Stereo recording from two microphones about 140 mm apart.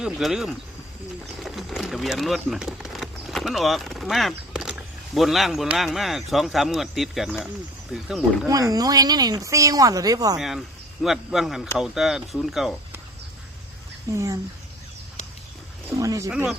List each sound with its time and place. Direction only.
0.0 s speech: 5° right (ahead or behind)
8.4 s speech: 25° right (ahead or behind)
10.3 s speech: centre (ahead or behind)
14.1 s speech: 20° right (ahead or behind)
16.0 s speech: 20° right (ahead or behind)